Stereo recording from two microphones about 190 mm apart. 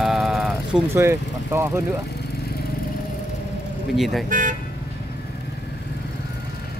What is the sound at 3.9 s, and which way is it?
Speech, centre (ahead or behind).